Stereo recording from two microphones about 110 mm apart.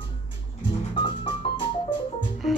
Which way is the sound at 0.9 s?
45° left (ahead or behind).